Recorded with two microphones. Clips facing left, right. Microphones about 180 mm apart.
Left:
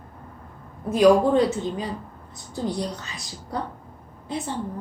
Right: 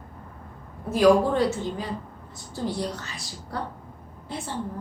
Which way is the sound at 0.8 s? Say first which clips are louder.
Left 2 dB; 20° left (ahead or behind).